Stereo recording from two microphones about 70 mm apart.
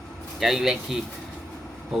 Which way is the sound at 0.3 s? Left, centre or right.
Centre.